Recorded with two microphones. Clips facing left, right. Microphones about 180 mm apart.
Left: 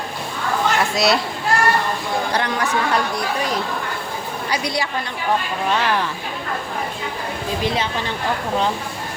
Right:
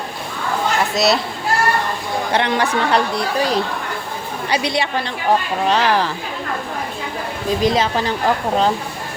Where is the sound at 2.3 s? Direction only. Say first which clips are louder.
Right 7 dB; 25° right (ahead or behind).